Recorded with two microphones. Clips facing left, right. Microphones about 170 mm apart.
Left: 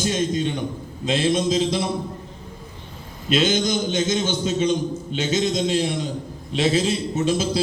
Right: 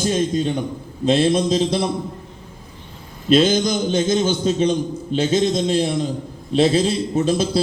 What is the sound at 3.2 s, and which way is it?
A man's voice, 35° right (ahead or behind).